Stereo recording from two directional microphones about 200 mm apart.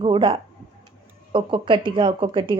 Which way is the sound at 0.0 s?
25° right (ahead or behind).